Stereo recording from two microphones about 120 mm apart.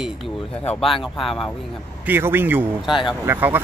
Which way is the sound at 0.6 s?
50° left (ahead or behind).